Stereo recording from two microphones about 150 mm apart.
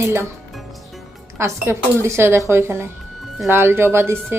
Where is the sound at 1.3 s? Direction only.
20° right (ahead or behind).